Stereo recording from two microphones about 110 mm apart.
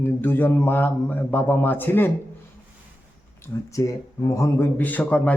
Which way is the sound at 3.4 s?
30° left (ahead or behind).